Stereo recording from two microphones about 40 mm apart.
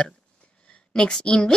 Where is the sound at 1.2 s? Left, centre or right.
Centre.